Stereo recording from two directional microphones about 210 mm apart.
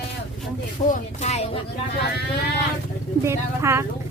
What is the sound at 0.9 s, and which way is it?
Speech, 35° left (ahead or behind).